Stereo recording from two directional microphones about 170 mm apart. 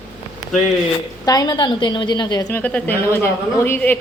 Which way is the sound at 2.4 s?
10° left (ahead or behind).